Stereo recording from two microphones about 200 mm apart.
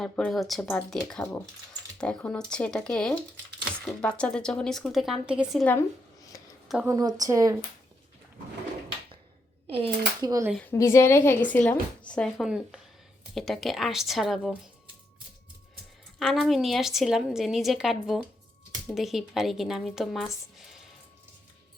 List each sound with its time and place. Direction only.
0.0 s a woman's voice: centre (ahead or behind)
6.8 s a woman's voice: 20° right (ahead or behind)
9.6 s speech: 30° right (ahead or behind)
10.2 s a woman's voice: 15° right (ahead or behind)
10.5 s a woman's voice: 10° left (ahead or behind)
16.1 s a woman's voice: centre (ahead or behind)